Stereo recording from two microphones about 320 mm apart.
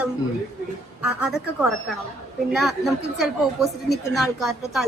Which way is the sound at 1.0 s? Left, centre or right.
Centre.